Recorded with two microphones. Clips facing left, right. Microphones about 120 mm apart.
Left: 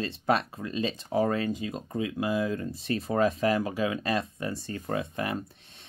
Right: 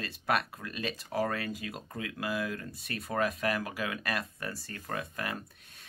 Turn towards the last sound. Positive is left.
turn(degrees=25)  # may be behind; listen again after turning